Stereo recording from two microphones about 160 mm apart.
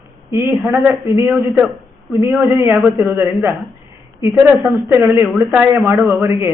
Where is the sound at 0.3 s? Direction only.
15° right (ahead or behind).